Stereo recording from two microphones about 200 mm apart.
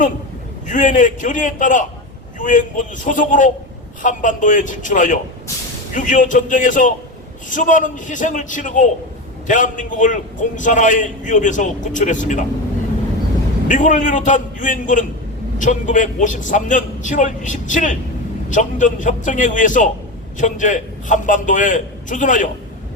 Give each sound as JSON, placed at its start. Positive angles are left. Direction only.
{"t": 0.7, "sound": "a man's voice", "side_deg": 40}
{"t": 13.7, "sound": "a man's voice", "side_deg": 40}